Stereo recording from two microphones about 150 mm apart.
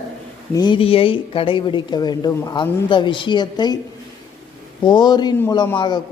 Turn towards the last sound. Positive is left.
turn(degrees=30)  # may be behind; listen again after turning